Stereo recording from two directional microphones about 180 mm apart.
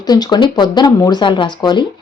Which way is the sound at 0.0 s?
20° left (ahead or behind).